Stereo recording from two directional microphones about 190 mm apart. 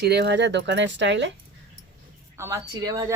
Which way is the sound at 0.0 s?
60° right (ahead or behind).